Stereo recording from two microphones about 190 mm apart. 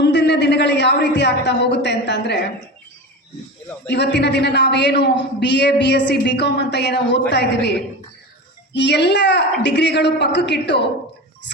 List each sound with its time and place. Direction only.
0.0 s a man's voice: 65° left (ahead or behind)
3.8 s a woman's voice: 65° left (ahead or behind)
8.7 s a woman's voice: 65° left (ahead or behind)